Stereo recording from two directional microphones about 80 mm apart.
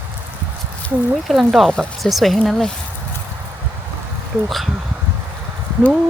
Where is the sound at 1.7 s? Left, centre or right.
Centre.